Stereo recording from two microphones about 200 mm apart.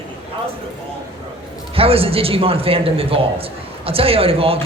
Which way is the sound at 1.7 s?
30° right (ahead or behind).